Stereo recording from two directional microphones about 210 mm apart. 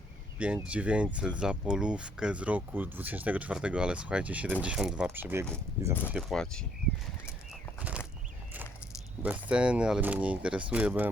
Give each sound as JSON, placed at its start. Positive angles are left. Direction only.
{"t": 0.3, "sound": "speech", "side_deg": -5}
{"t": 7.8, "sound": "a sound", "side_deg": -5}
{"t": 9.2, "sound": "speech", "side_deg": -5}